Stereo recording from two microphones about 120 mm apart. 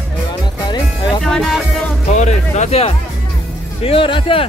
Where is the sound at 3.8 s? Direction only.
50° left (ahead or behind).